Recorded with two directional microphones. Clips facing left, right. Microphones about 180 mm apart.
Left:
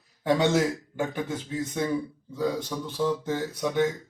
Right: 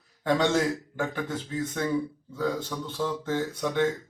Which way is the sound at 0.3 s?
10° left (ahead or behind).